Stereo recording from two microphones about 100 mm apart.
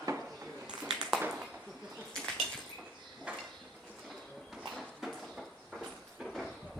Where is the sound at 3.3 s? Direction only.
10° right (ahead or behind).